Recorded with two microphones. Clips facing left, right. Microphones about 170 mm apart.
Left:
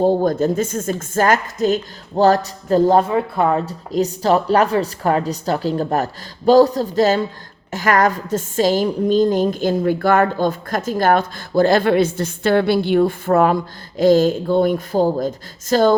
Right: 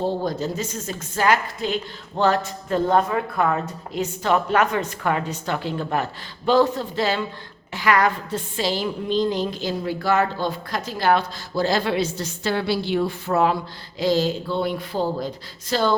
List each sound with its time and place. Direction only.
0.0 s a woman's voice: 50° left (ahead or behind)